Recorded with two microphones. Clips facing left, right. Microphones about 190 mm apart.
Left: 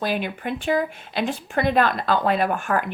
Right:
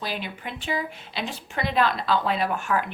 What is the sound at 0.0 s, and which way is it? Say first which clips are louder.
A woman's voice: left 7 dB; 55° left (ahead or behind).